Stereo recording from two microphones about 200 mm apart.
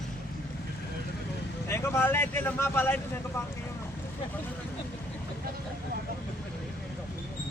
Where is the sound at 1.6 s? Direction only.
15° left (ahead or behind).